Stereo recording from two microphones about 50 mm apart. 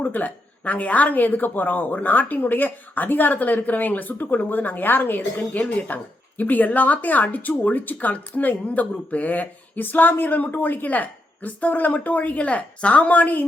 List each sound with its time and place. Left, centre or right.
0.0 s speech: left